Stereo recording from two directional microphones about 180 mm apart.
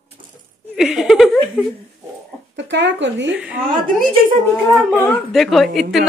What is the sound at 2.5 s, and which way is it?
Speech, 80° right.